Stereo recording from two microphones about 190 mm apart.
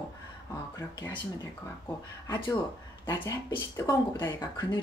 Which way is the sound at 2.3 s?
20° left (ahead or behind).